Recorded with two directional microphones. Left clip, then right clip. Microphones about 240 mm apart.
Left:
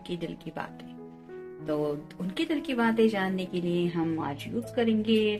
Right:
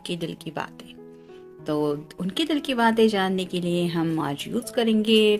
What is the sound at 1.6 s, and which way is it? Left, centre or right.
Speech, right.